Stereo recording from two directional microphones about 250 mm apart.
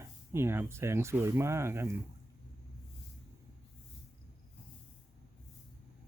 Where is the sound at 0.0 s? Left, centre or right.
Centre.